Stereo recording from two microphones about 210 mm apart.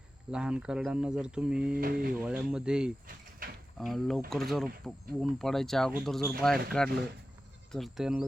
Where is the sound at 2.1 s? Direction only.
5° right (ahead or behind).